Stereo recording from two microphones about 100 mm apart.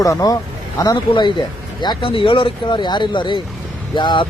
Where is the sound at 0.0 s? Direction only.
35° left (ahead or behind).